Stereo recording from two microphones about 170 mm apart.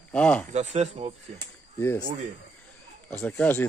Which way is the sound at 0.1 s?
5° left (ahead or behind).